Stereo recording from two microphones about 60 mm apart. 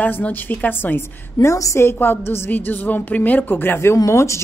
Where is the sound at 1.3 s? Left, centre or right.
Left.